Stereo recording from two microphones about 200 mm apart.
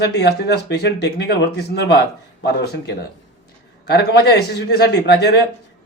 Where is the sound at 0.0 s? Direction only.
55° left (ahead or behind).